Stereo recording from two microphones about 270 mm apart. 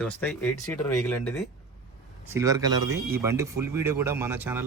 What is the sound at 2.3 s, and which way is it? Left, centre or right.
Speech, centre.